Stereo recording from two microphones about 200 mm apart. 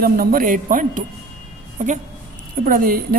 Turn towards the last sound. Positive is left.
turn(degrees=-45)  # may be behind; listen again after turning